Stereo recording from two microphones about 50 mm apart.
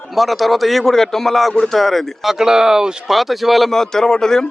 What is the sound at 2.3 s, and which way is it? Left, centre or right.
A man's voice, centre.